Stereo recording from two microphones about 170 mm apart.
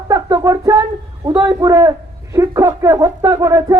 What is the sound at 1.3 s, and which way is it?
A man's voice, 25° right (ahead or behind).